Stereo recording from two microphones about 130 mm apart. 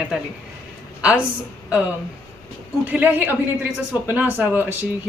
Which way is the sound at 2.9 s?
15° right (ahead or behind).